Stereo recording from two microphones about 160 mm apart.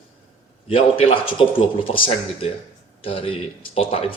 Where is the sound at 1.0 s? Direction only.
35° left (ahead or behind).